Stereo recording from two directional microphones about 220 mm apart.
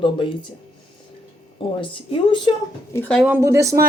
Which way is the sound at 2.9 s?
5° left (ahead or behind).